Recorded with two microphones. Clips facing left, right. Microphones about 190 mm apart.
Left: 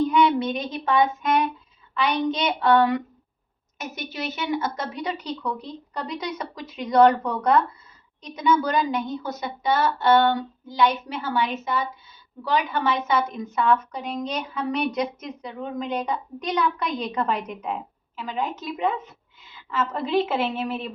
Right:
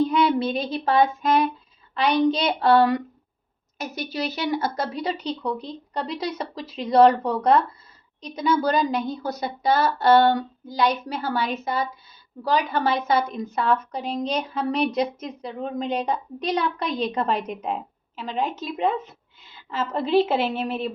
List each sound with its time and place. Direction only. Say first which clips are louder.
0.0 s child singing: even; 35° right (ahead or behind)
2.0 s a woman's voice: right 3 dB; 35° right (ahead or behind)